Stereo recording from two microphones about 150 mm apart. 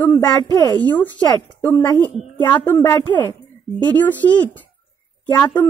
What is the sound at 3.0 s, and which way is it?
Speech, 30° left (ahead or behind).